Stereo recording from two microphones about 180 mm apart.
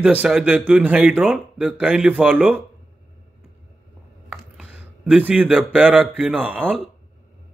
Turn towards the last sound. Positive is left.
turn(degrees=-10)  # may be behind; listen again after turning